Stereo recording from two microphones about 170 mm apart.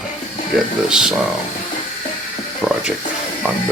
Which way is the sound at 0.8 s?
5° right (ahead or behind).